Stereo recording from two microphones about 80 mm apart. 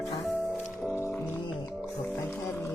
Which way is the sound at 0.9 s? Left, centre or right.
Left.